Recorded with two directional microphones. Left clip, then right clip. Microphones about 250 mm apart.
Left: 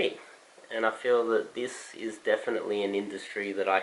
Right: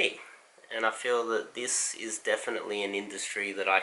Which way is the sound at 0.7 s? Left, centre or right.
Centre.